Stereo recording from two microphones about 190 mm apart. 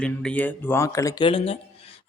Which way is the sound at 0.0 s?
5° left (ahead or behind).